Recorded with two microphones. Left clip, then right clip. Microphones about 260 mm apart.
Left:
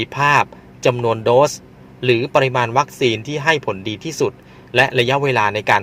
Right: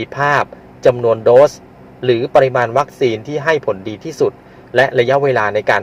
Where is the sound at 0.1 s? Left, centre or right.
Left.